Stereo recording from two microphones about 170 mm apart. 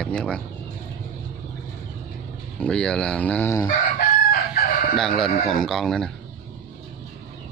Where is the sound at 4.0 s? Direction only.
60° left (ahead or behind).